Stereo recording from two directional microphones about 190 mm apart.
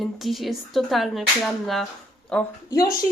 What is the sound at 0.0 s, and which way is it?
Speech, centre (ahead or behind).